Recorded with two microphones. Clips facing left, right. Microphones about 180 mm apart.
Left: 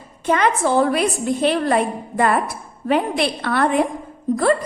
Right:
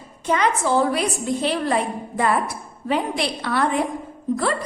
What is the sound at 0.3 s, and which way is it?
A woman's voice, 55° left (ahead or behind).